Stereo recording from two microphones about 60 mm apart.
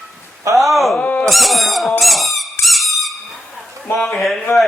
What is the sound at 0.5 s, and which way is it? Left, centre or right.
Speech, centre.